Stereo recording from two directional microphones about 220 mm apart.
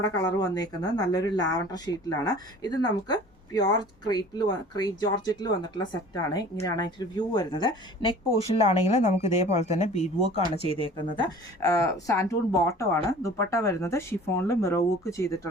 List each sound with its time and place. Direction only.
0.0 s speech: 15° left (ahead or behind)
8.9 s speech: 30° left (ahead or behind)
10.9 s speech: 20° left (ahead or behind)